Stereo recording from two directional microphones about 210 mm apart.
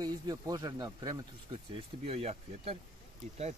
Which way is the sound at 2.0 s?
30° right (ahead or behind).